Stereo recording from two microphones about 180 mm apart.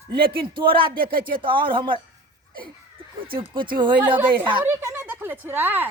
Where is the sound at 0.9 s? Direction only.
55° right (ahead or behind).